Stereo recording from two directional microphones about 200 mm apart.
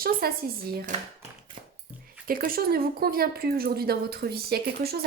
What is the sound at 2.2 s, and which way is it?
Speech, 45° right (ahead or behind).